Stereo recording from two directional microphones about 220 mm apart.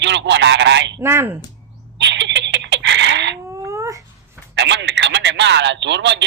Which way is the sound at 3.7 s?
15° right (ahead or behind).